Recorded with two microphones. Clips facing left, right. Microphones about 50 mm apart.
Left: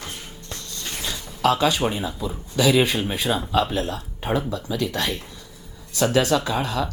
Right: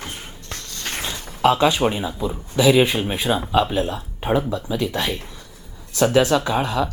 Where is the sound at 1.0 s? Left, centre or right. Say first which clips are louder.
Right 3 dB; right.